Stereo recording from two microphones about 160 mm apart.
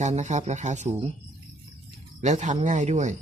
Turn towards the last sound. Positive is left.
turn(degrees=-45)  # may be behind; listen again after turning